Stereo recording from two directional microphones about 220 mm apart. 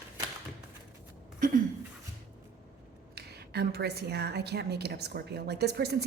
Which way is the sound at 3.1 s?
45° right (ahead or behind).